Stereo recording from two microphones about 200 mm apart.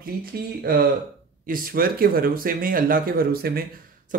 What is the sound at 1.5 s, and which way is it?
Speech, 45° right (ahead or behind).